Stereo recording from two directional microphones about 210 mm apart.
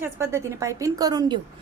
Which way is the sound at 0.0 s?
15° right (ahead or behind).